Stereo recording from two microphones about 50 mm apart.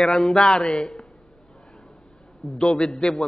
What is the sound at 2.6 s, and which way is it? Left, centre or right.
Speech, centre.